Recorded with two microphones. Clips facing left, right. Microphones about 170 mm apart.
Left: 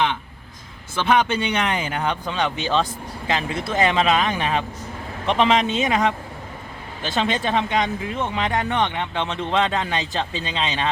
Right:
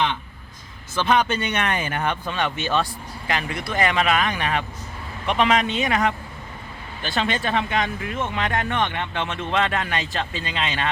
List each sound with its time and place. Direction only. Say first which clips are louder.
1.0 s speech: left 2 dB; 10° left (ahead or behind)